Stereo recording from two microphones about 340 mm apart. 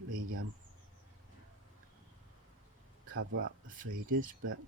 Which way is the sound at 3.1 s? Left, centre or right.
Right.